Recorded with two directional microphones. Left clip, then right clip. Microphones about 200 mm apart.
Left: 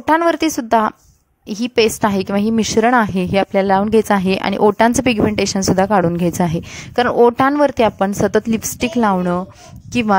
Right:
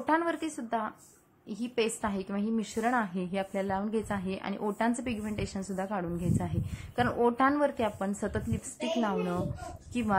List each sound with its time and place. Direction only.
0.0 s speech: 50° left (ahead or behind)